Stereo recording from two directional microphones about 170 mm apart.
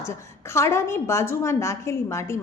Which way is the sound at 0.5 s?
15° left (ahead or behind).